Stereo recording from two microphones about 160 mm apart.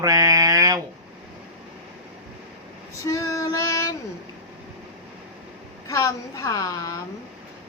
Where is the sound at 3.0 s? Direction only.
20° left (ahead or behind).